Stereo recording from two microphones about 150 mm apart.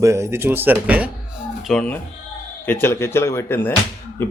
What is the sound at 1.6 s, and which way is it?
A man's voice, 5° left (ahead or behind).